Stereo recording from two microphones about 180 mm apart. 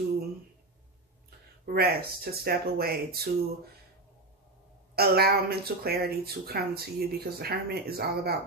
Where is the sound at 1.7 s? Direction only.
60° right (ahead or behind).